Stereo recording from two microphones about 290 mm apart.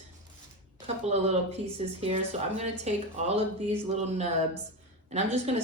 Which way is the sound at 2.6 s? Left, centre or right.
Right.